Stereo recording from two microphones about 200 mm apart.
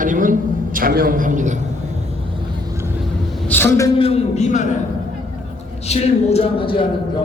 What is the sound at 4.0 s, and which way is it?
Speech, 30° left (ahead or behind).